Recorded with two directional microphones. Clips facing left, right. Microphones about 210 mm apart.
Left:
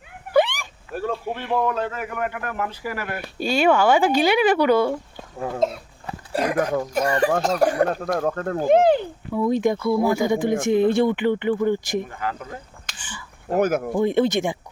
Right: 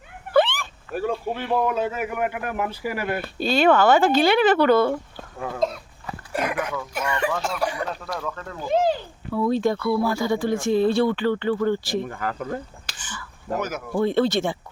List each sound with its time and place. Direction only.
0.3 s a sound: 10° left (ahead or behind)
0.9 s a sound: 5° right (ahead or behind)
1.5 s speech: 10° right (ahead or behind)
3.2 s speech: 10° left (ahead or behind)
5.4 s speech: 25° left (ahead or behind)
6.3 s speech: 35° left (ahead or behind); by 9.0 s 60° left (ahead or behind)
9.3 s speech: 15° left (ahead or behind)
12.2 s speech: 45° right (ahead or behind)
13.5 s speech: 55° left (ahead or behind)
13.9 s speech: 15° left (ahead or behind)